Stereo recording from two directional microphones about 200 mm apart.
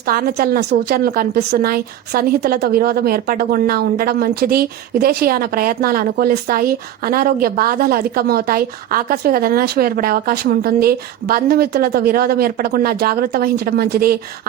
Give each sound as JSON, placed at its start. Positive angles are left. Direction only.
{"t": 0.1, "sound": "a woman's voice", "side_deg": -45}